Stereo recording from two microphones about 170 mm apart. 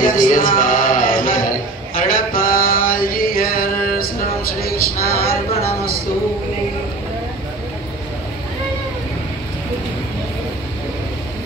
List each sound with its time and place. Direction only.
0.0 s music: 50° left (ahead or behind)
2.0 s mantra: 55° left (ahead or behind)
4.6 s a sound: 60° left (ahead or behind)